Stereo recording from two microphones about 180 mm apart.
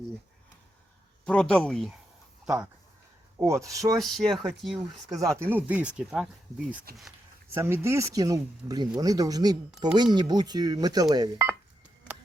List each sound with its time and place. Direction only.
1.2 s speech: 5° left (ahead or behind)
3.4 s speech: 15° right (ahead or behind)
3.9 s speech: centre (ahead or behind)
5.2 s speech: 15° right (ahead or behind)